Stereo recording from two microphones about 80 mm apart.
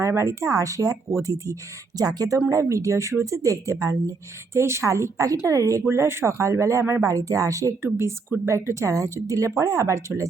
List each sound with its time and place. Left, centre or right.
0.0 s a woman's voice: right
2.5 s a woman's voice: right
7.8 s speech: right